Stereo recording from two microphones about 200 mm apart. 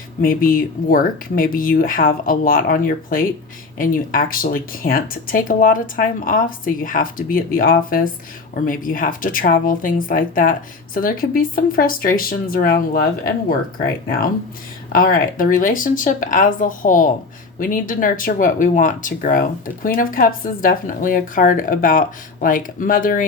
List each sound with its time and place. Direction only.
0.2 s speech: 45° left (ahead or behind)
14.9 s speech: 45° left (ahead or behind)